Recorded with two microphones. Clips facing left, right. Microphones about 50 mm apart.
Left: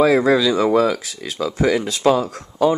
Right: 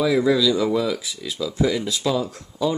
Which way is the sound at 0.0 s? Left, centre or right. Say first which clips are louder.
Left 4 dB; left.